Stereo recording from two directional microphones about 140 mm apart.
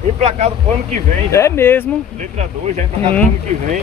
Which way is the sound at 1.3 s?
20° left (ahead or behind).